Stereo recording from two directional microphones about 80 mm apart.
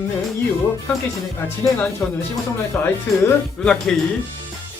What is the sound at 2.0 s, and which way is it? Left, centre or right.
Speech, left.